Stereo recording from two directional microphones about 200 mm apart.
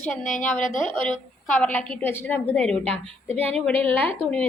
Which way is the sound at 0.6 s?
40° left (ahead or behind).